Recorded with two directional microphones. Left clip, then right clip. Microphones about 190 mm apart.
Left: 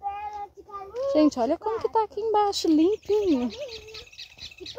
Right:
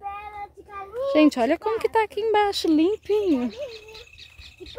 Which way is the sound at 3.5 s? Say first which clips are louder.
Right 2 dB; 35° left (ahead or behind).